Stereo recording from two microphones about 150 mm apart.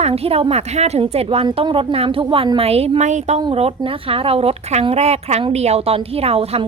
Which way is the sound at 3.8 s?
35° right (ahead or behind).